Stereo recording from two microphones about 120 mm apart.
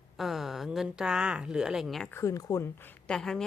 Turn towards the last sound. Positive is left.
turn(degrees=5)  # may be behind; listen again after turning